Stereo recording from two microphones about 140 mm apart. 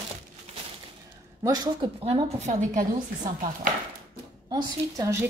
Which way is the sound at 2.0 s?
45° right (ahead or behind).